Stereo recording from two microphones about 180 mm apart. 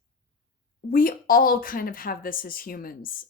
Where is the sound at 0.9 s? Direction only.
55° left (ahead or behind).